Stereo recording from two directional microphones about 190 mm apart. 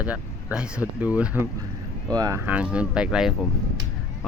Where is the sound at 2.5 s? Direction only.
5° right (ahead or behind).